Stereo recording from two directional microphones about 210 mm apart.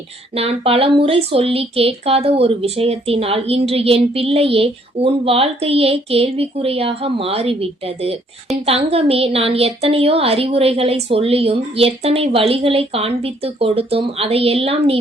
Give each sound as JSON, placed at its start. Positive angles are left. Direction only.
{"t": 0.3, "sound": "speech", "side_deg": -25}